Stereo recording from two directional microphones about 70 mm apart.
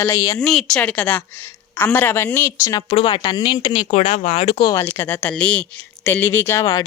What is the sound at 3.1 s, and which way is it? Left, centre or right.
Speech, left.